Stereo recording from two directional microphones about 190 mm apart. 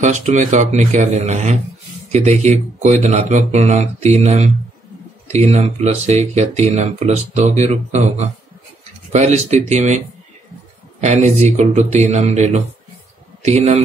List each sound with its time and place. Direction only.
0.0 s speech: 40° right (ahead or behind)
9.1 s speech: 35° right (ahead or behind)